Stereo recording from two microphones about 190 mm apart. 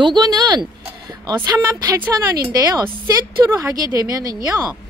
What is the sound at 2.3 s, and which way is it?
Speech, 20° right (ahead or behind).